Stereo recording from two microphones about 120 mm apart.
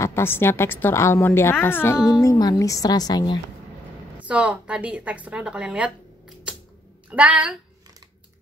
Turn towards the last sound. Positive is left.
turn(degrees=-10)  # may be behind; listen again after turning